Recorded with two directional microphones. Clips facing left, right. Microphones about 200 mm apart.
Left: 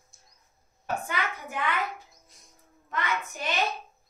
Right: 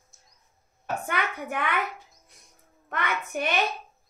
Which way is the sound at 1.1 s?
60° right (ahead or behind).